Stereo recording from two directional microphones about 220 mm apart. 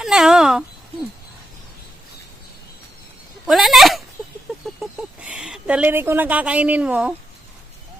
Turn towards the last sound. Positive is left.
turn(degrees=-5)  # may be behind; listen again after turning